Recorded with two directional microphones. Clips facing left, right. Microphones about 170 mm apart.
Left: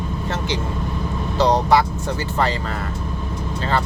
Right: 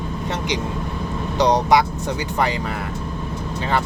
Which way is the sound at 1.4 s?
15° right (ahead or behind).